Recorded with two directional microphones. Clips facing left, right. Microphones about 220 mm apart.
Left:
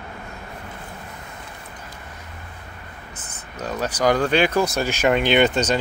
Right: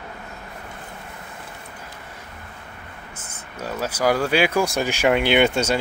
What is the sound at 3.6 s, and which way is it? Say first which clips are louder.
Speech: left 1 dB; 10° right (ahead or behind).